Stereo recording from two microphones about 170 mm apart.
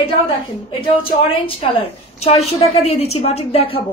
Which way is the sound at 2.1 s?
35° left (ahead or behind).